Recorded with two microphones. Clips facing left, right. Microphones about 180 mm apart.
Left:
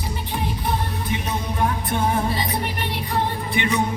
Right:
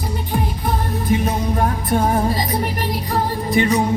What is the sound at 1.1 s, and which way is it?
Music, 45° right (ahead or behind).